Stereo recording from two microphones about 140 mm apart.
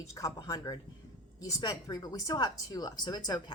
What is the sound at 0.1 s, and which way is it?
Speech, 25° left (ahead or behind).